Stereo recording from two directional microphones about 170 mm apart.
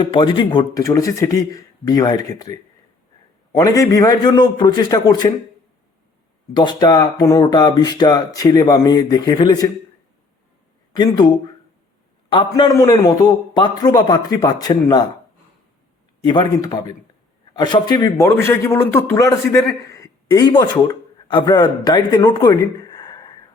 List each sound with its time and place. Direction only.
0.0 s speech: 30° left (ahead or behind)
6.5 s speech: 25° left (ahead or behind)
10.9 s speech: 25° left (ahead or behind)
12.7 s speech: 15° left (ahead or behind)
16.2 s speech: 25° left (ahead or behind)